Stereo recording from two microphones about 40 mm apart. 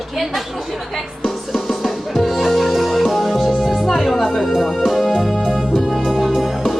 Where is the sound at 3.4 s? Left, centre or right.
Centre.